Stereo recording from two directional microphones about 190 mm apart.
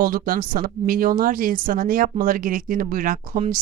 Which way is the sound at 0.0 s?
50° right (ahead or behind).